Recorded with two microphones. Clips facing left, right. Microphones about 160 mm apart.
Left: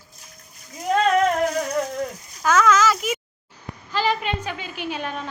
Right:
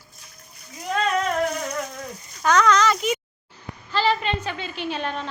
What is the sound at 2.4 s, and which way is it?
A woman's voice, 5° left (ahead or behind).